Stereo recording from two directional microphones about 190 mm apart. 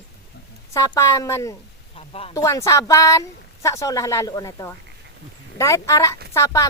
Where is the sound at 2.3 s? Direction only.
15° left (ahead or behind).